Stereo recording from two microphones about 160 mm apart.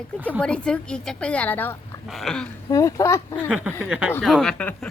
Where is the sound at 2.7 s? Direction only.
20° left (ahead or behind).